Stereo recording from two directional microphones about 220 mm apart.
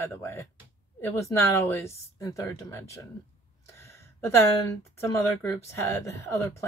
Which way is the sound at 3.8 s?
10° left (ahead or behind).